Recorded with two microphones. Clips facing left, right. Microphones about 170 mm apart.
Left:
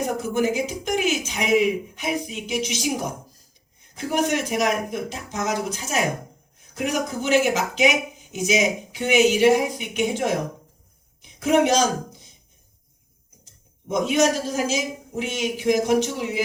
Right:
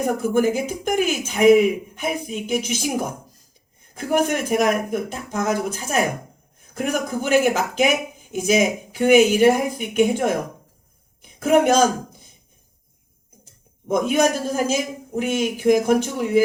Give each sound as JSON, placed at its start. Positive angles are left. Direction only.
{"t": 0.0, "sound": "speech", "side_deg": -55}
{"t": 11.2, "sound": "a sound", "side_deg": -55}
{"t": 13.8, "sound": "speech", "side_deg": -55}